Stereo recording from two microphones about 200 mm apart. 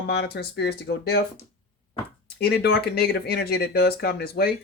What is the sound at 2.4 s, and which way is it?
Speech, 55° left (ahead or behind).